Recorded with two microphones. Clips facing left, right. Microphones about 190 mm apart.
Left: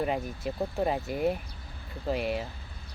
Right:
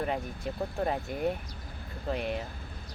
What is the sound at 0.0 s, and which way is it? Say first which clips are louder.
Speech: left 2 dB; 10° left (ahead or behind).